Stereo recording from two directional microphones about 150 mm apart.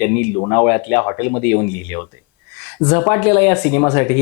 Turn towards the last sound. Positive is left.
turn(degrees=20)  # may be behind; listen again after turning